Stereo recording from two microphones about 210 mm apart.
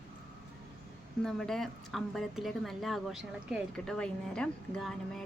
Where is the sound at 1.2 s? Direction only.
Centre (ahead or behind).